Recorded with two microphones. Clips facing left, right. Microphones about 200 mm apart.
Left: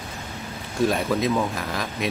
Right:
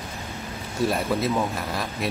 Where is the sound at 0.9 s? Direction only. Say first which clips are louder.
Left 1 dB; 5° right (ahead or behind).